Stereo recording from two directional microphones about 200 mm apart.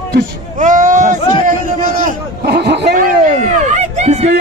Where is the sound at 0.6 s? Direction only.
40° right (ahead or behind); by 3.0 s 60° right (ahead or behind).